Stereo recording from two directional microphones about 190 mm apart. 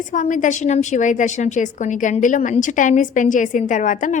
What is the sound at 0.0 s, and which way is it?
A woman's voice, 40° left (ahead or behind).